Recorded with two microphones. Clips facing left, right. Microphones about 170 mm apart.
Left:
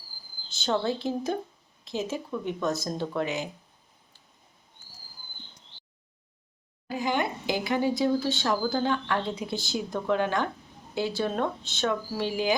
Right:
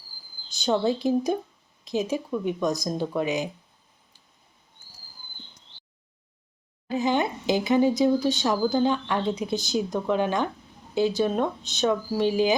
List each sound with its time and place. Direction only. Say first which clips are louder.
0.5 s speech: right 4 dB; 15° right (ahead or behind)
6.8 s speech: right 4 dB; 20° right (ahead or behind)